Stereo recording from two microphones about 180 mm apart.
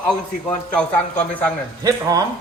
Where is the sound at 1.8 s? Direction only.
20° right (ahead or behind).